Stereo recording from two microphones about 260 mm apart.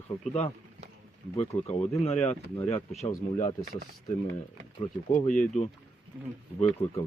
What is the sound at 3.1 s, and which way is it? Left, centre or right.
Speech, left.